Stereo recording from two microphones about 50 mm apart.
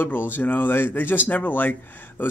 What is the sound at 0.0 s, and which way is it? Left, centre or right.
Speech, left.